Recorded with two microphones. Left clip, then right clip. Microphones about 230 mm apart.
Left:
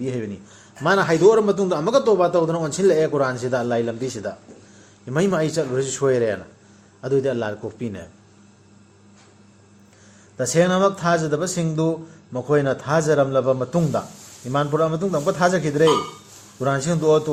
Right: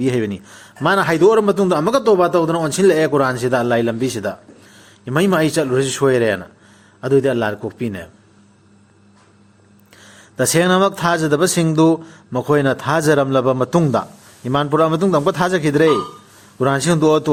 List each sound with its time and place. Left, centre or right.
0.0 s a man's voice: right
10.3 s speech: right